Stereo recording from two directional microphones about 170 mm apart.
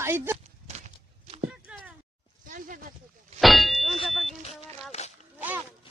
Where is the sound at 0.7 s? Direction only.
40° right (ahead or behind).